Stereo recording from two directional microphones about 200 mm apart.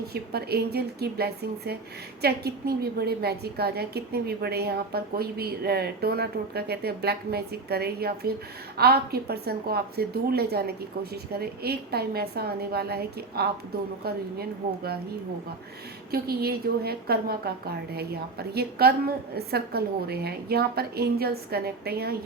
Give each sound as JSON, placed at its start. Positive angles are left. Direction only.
{"t": 0.1, "sound": "a woman's voice", "side_deg": -50}
{"t": 16.1, "sound": "a woman's voice", "side_deg": -50}